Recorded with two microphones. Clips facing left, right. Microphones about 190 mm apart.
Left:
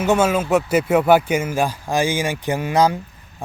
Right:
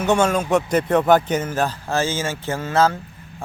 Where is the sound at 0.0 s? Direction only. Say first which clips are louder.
Left 1 dB; 5° left (ahead or behind).